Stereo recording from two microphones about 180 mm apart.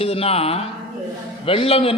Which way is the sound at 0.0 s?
35° left (ahead or behind).